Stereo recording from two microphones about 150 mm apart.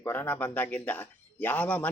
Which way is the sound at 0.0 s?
15° left (ahead or behind).